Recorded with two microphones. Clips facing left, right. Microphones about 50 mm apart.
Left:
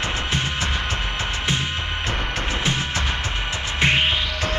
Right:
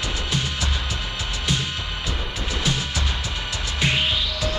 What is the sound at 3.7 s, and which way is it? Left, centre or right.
Music, left.